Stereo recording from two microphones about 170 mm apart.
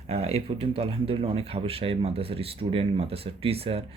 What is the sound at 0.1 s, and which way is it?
Speech, 35° right (ahead or behind).